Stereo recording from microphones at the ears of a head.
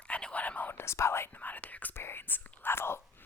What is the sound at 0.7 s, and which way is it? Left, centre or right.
Whispering, left.